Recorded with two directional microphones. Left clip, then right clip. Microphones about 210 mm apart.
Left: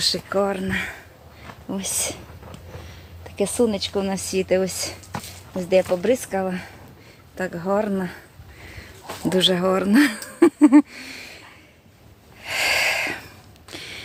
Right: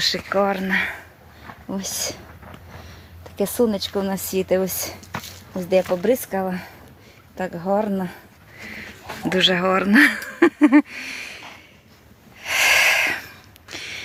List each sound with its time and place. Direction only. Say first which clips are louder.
0.0 s speech: right 2 dB; 15° right (ahead or behind)
1.6 s speech: even; 15° right (ahead or behind)
3.3 s speech: even; 25° right (ahead or behind)
9.3 s speech: right 1 dB; 5° left (ahead or behind)
12.4 s a sound: right 4 dB; 5° left (ahead or behind)